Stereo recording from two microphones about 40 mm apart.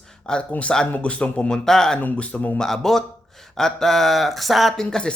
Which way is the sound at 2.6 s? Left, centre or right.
Centre.